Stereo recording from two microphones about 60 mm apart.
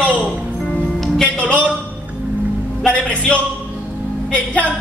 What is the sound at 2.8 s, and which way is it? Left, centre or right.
Speech, left.